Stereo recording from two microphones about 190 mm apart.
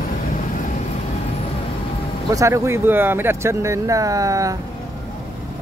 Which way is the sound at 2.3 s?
15° right (ahead or behind).